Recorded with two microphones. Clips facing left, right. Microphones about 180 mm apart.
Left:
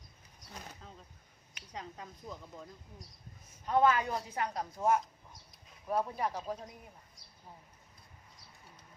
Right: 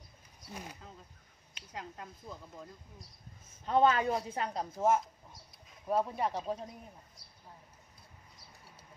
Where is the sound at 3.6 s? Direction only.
25° right (ahead or behind).